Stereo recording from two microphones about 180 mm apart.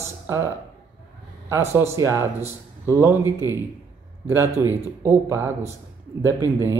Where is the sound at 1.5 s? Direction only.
15° right (ahead or behind).